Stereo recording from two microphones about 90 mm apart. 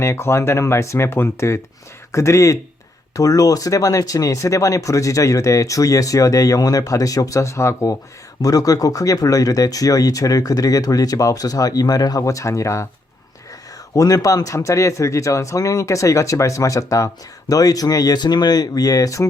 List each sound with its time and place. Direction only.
0.0 s speech: 30° left (ahead or behind)
8.4 s speech: 45° left (ahead or behind)
13.9 s speech: 40° left (ahead or behind)